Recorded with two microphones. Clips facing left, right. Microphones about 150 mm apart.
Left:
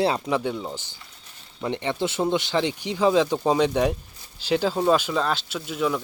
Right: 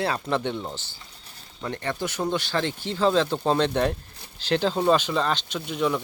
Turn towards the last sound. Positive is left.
turn(degrees=0)  # may be behind; listen again after turning